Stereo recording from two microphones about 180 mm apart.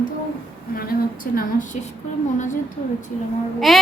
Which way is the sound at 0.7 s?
50° left (ahead or behind).